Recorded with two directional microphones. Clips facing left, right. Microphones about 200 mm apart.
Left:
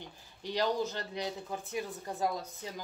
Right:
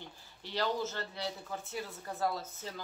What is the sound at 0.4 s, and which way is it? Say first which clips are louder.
Speech: left 3 dB; 15° left (ahead or behind).